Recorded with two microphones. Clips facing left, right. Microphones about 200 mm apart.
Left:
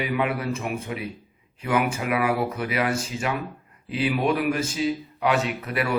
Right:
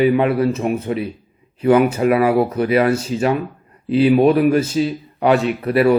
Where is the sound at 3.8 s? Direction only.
35° right (ahead or behind).